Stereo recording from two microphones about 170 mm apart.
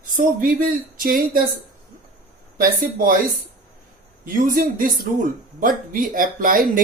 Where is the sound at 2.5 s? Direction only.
55° right (ahead or behind).